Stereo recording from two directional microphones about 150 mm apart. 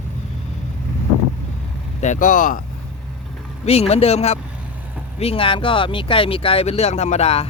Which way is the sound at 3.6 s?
45° left (ahead or behind).